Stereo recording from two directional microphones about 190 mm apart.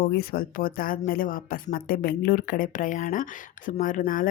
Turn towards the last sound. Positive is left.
turn(degrees=45)  # may be behind; listen again after turning